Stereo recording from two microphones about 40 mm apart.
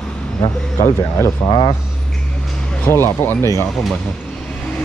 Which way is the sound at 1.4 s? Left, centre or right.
Left.